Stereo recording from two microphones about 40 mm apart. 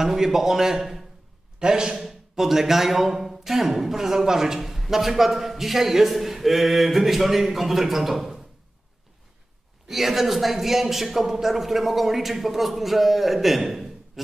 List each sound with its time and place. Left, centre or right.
0.0 s a man's voice: centre
1.6 s a man's voice: centre
9.8 s speech: centre